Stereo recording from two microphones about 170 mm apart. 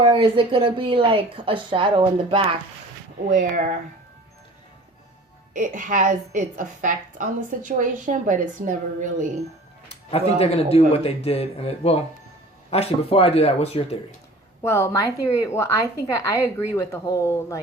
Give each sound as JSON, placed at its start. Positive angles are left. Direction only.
{"t": 0.0, "sound": "a woman's voice", "side_deg": -30}
{"t": 3.2, "sound": "a woman's voice", "side_deg": -50}
{"t": 5.5, "sound": "a woman's voice", "side_deg": -50}
{"t": 9.9, "sound": "speech", "side_deg": 35}
{"t": 14.6, "sound": "a woman's voice", "side_deg": 15}